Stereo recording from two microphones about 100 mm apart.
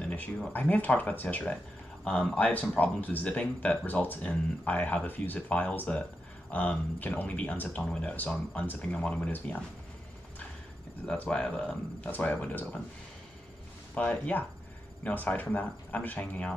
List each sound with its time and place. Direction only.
0.0 s a sound: 15° left (ahead or behind)
0.5 s speech: 15° left (ahead or behind)
11.1 s speech: 10° left (ahead or behind)
13.9 s speech: 15° left (ahead or behind)